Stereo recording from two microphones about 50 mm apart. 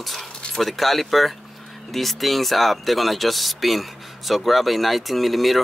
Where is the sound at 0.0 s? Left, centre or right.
Centre.